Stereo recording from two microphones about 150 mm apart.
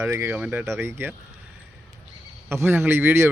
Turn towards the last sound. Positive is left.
turn(degrees=-15)  # may be behind; listen again after turning